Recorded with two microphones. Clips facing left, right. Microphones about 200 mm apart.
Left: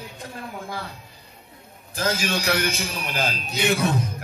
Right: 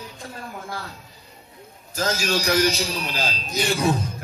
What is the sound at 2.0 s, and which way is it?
Speech, 55° left (ahead or behind).